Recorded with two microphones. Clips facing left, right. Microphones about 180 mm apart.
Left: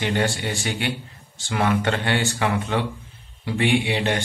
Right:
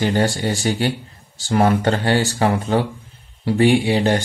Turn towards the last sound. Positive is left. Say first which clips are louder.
# right 5 dB
turn(degrees=-40)  # may be behind; listen again after turning